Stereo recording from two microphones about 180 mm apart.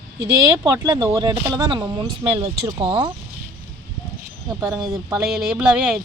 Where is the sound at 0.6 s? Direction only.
15° right (ahead or behind).